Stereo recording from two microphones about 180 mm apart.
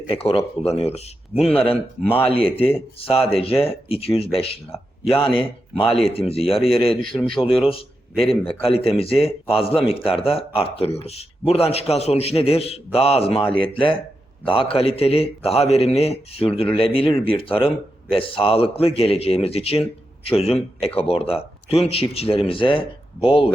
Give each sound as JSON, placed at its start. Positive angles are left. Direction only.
{"t": 0.1, "sound": "a man's voice", "side_deg": 35}
{"t": 7.7, "sound": "a sound", "side_deg": 30}
{"t": 8.6, "sound": "a man's voice", "side_deg": 30}